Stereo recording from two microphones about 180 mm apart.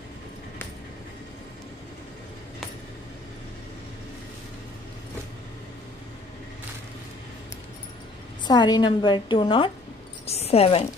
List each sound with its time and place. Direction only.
8.5 s a woman's voice: 25° left (ahead or behind)